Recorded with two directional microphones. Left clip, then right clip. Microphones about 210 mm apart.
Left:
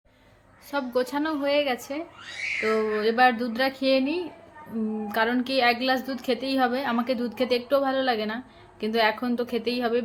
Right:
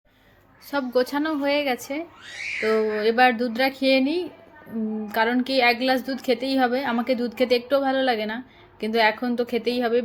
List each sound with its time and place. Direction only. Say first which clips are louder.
0.7 s a woman's voice: right 3 dB; 15° right (ahead or behind)